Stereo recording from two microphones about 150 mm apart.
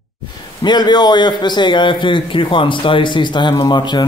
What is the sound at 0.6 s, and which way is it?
A man's voice, 30° left (ahead or behind).